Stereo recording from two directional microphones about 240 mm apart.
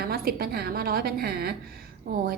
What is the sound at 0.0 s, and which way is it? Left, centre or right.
A woman's voice, right.